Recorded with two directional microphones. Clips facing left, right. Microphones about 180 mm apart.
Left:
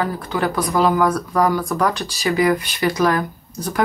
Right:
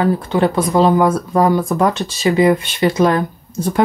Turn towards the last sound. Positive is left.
turn(degrees=-25)  # may be behind; listen again after turning